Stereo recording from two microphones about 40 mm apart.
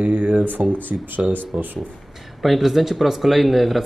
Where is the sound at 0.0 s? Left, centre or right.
Right.